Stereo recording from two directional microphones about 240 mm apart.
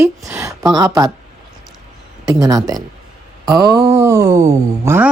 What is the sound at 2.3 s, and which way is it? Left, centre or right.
Speech, centre.